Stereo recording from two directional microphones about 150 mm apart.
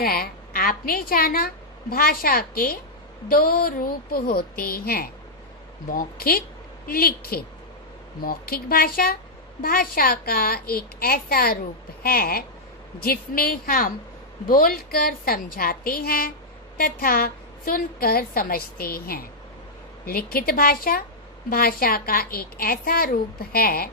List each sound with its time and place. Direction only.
0.0 s a woman's voice: 80° left
5.9 s a woman's voice: 75° left (ahead or behind)